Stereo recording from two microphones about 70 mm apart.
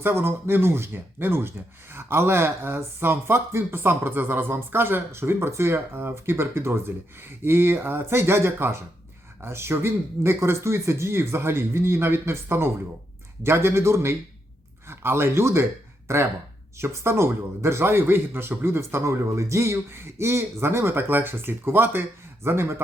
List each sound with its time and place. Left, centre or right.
0.0 s speech: right